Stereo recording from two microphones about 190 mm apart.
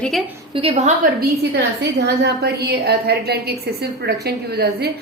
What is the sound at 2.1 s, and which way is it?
A woman's voice, 60° right (ahead or behind).